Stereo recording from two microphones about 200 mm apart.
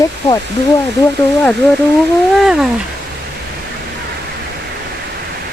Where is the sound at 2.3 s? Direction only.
Centre (ahead or behind).